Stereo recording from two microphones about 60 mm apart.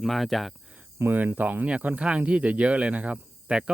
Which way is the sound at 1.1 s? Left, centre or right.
Right.